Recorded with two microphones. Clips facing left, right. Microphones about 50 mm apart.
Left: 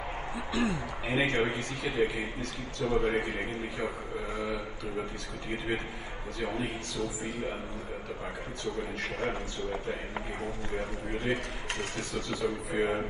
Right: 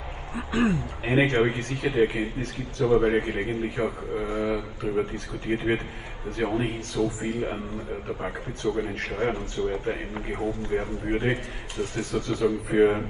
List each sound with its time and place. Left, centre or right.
0.5 s a man's voice: right
5.5 s a man's voice: right